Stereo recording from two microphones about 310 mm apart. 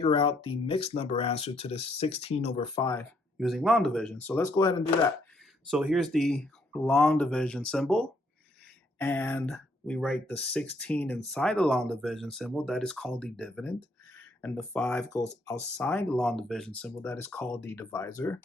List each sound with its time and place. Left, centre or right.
0.0 s speech: centre
3.3 s speech: centre
5.7 s speech: centre